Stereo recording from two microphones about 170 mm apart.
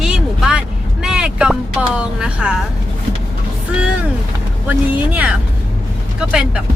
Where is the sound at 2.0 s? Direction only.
5° right (ahead or behind).